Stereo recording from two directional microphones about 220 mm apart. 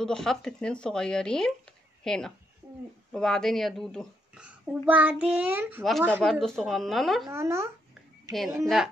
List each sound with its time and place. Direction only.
0.0 s a child's voice: 5° left (ahead or behind)
7.2 s a child's voice: 15° right (ahead or behind)
8.6 s speech: centre (ahead or behind)